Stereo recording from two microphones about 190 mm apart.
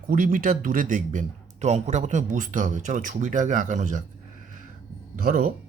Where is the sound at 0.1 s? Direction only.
45° right (ahead or behind).